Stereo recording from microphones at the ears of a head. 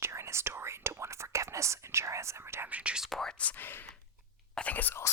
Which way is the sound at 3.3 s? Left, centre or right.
Left.